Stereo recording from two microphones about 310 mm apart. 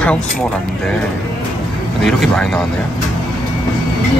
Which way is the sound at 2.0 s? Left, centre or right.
Centre.